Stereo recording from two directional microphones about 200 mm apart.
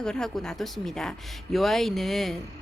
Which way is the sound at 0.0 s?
5° left (ahead or behind).